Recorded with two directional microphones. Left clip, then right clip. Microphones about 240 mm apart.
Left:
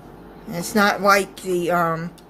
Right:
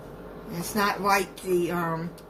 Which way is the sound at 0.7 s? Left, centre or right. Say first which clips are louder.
Left 7 dB; left.